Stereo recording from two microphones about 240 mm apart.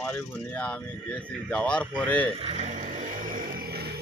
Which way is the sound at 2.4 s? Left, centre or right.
Right.